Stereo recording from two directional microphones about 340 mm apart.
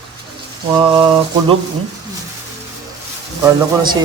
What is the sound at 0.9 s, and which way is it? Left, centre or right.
Speech, centre.